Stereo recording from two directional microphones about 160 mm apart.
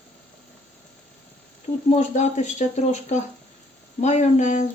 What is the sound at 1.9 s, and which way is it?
Speech, 50° left (ahead or behind).